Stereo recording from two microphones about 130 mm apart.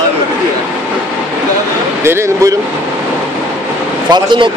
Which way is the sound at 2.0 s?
20° right (ahead or behind).